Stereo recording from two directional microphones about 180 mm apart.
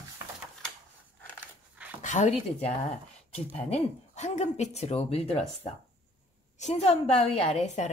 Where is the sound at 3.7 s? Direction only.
40° left (ahead or behind).